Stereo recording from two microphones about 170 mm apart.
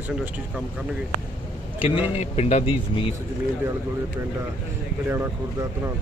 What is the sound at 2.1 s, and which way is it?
Speech, 40° left (ahead or behind).